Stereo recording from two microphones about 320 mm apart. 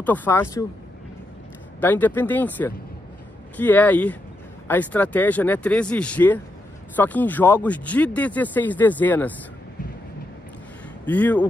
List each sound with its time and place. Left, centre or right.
0.0 s speech: centre
1.8 s speech: centre
11.1 s speech: centre